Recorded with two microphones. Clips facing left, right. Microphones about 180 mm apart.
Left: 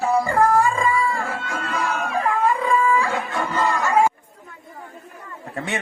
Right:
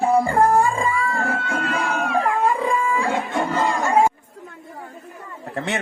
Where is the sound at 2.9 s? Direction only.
25° right (ahead or behind).